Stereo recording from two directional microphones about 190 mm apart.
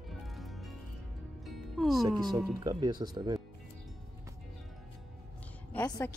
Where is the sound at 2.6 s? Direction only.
20° right (ahead or behind).